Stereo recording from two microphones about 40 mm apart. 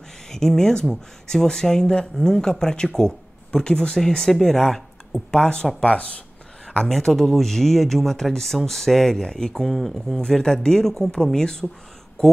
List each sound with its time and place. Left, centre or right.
0.3 s speech: centre
4.2 s speech: centre
5.8 s speech: left
6.9 s speech: centre